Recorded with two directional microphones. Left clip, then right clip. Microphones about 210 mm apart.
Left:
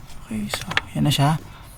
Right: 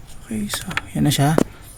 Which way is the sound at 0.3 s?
50° right (ahead or behind).